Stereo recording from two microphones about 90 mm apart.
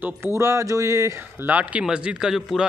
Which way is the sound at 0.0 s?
30° right (ahead or behind).